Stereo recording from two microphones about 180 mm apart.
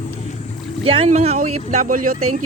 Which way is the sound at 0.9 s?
35° right (ahead or behind).